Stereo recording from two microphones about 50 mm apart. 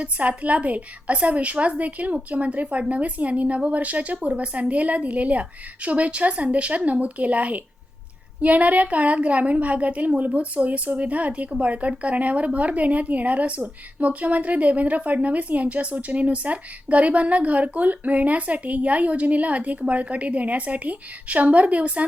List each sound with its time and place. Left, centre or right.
0.0 s a woman's voice: right